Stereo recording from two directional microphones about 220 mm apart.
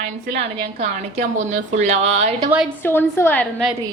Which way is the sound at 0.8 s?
30° right (ahead or behind).